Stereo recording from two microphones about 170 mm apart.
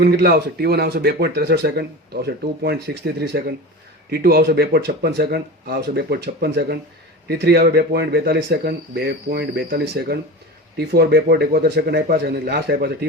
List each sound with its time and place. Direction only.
0.0 s speech: 70° right (ahead or behind)
4.1 s speech: 65° right (ahead or behind)